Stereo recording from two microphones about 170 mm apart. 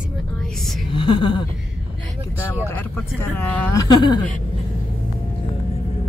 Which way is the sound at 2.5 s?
15° left (ahead or behind).